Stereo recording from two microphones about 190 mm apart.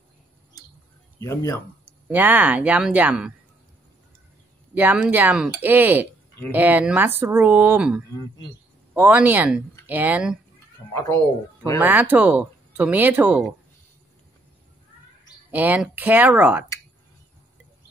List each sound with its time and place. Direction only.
1.2 s speech: 15° left (ahead or behind)
2.0 s speech: 10° right (ahead or behind)
4.7 s speech: 5° right (ahead or behind)
10.9 s speech: 15° left (ahead or behind)
11.8 s speech: 10° right (ahead or behind)
15.5 s speech: 10° right (ahead or behind)